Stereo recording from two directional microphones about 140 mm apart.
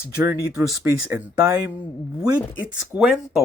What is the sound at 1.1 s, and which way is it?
Speech, 25° right (ahead or behind).